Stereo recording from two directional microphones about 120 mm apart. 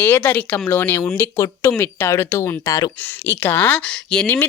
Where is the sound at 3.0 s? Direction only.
20° left (ahead or behind).